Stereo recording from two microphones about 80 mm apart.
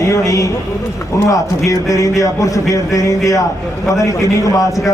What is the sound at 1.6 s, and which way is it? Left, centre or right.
A man's voice, left.